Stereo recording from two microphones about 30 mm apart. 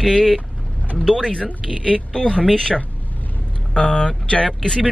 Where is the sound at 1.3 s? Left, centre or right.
Left.